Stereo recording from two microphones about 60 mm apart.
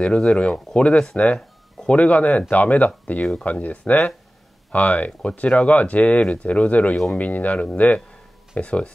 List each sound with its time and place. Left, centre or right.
0.0 s speech: centre